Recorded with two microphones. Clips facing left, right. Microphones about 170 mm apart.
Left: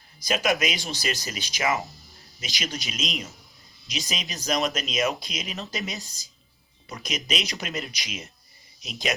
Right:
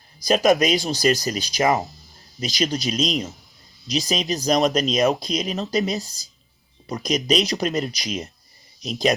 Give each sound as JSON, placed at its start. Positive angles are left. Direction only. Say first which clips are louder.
{"t": 0.2, "sound": "speech", "louder": "right 8 dB", "side_deg": -35}